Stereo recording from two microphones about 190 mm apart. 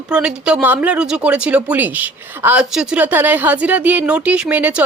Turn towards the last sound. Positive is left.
turn(degrees=-10)  # may be behind; listen again after turning